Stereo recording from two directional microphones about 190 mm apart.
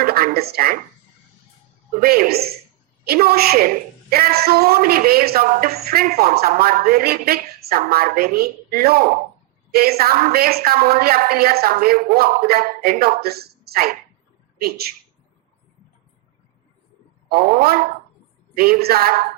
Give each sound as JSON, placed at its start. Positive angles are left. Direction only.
{"t": 0.0, "sound": "speech", "side_deg": -50}
{"t": 2.0, "sound": "speech", "side_deg": -55}
{"t": 17.2, "sound": "speech", "side_deg": -55}